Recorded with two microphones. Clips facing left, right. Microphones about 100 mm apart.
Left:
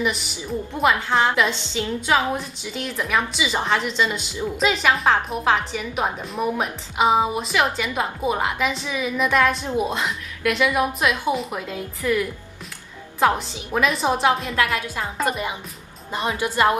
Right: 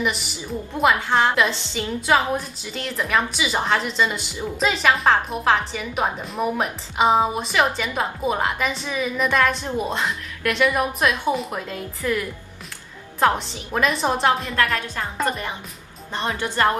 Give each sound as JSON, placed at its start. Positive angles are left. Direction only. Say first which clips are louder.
{"t": 0.7, "sound": "a woman's voice", "louder": "right 1 dB", "side_deg": 0}
{"t": 13.2, "sound": "a woman's voice", "louder": "even", "side_deg": 5}